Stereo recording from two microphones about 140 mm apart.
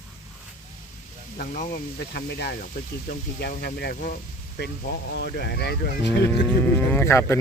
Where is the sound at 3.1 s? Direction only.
65° left (ahead or behind).